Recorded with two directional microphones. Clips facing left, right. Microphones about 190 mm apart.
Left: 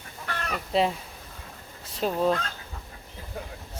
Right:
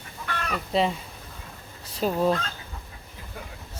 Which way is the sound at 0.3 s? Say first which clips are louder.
Right 2 dB; 40° left (ahead or behind).